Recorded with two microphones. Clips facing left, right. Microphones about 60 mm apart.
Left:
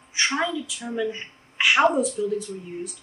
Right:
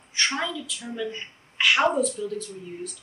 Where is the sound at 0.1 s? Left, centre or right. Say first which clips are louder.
Left 3 dB; centre.